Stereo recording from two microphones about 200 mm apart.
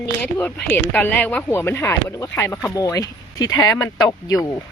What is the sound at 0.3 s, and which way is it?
Speech, 10° left (ahead or behind).